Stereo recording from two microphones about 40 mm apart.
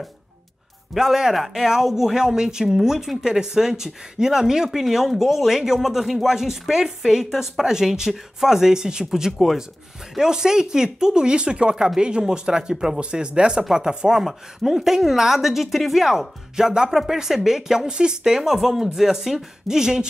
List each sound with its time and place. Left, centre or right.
0.9 s speech: centre
13.0 s speech: right